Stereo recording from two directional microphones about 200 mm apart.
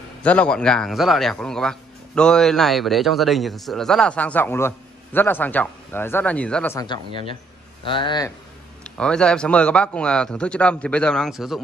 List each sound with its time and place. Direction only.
0.2 s speech: 5° left (ahead or behind); by 8.3 s 20° left (ahead or behind)
8.8 s speech: 5° left (ahead or behind)